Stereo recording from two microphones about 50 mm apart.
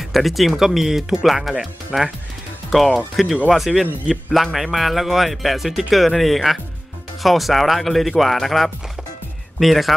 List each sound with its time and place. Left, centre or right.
0.1 s speech: centre
1.9 s speech: centre
2.7 s speech: centre